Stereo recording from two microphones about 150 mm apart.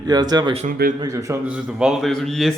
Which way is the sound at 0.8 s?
90° right.